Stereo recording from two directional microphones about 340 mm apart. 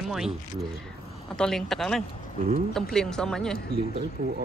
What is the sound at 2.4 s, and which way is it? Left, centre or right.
Speech, centre.